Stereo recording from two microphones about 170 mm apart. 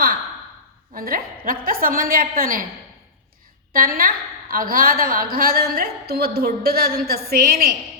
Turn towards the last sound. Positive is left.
turn(degrees=-65)  # may be behind; listen again after turning